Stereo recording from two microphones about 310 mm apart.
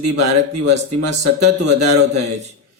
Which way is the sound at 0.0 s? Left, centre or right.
Right.